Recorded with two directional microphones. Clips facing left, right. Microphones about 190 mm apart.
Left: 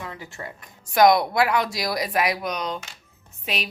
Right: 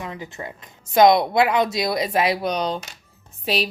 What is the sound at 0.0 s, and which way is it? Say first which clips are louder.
A woman's voice: right 3 dB; 20° right (ahead or behind).